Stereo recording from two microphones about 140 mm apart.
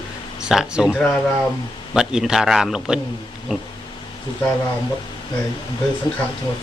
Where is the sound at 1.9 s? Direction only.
5° right (ahead or behind).